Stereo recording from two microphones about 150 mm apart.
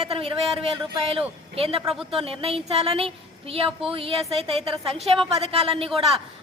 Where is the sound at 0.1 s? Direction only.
40° right (ahead or behind).